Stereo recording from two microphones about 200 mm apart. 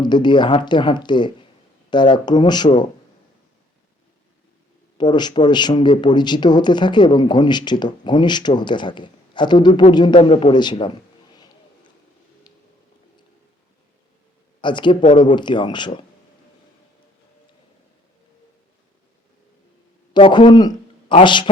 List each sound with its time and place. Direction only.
0.0 s a man's voice: 20° left (ahead or behind)
4.9 s a man's voice: 20° left (ahead or behind)
11.3 s a sound: 20° left (ahead or behind)
14.6 s a man's voice: 25° left (ahead or behind)
20.1 s a man's voice: 25° left (ahead or behind)